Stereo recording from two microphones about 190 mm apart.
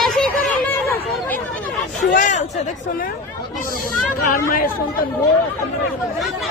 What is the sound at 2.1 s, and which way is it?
Speech, 40° left (ahead or behind).